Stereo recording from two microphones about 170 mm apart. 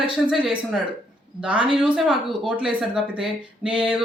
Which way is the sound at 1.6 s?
30° right (ahead or behind).